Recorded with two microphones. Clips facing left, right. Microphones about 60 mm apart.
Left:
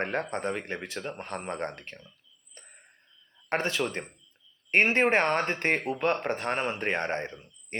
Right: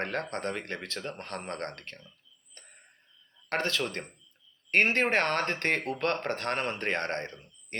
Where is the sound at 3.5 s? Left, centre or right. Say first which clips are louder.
Left 2 dB; centre.